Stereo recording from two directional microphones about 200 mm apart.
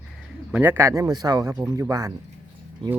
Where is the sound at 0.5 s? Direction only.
10° right (ahead or behind).